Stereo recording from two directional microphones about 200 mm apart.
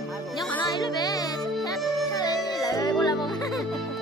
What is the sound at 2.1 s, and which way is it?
Music, 20° left (ahead or behind).